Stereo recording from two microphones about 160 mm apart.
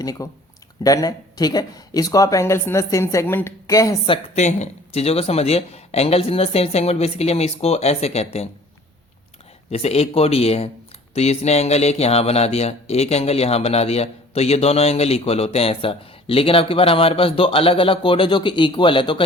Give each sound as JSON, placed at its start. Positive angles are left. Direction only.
{"t": 0.0, "sound": "speech", "side_deg": 25}
{"t": 4.4, "sound": "speech", "side_deg": 45}
{"t": 9.6, "sound": "speech", "side_deg": 40}